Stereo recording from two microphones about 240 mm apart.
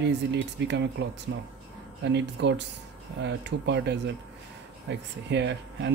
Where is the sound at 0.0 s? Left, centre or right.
Right.